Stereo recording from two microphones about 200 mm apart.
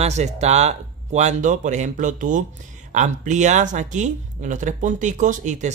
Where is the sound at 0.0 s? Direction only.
35° right (ahead or behind).